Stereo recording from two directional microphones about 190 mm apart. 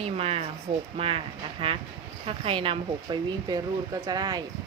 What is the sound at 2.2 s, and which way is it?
Speech, 30° right (ahead or behind).